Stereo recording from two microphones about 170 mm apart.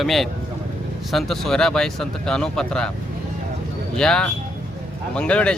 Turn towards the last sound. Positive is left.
turn(degrees=5)  # may be behind; listen again after turning